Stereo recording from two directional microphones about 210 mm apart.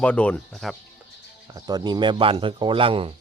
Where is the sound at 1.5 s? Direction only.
20° right (ahead or behind).